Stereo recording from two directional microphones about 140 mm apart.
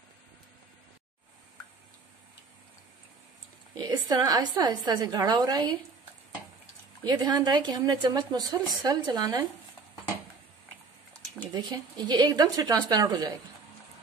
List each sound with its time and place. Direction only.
3.7 s speech: 30° right (ahead or behind)
7.0 s speech: 30° right (ahead or behind)
11.5 s speech: 30° right (ahead or behind)